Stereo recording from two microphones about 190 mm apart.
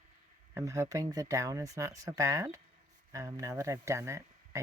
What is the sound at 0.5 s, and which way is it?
Speech, 15° right (ahead or behind).